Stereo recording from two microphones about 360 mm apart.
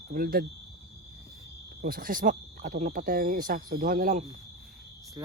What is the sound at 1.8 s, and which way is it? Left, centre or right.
Speech, right.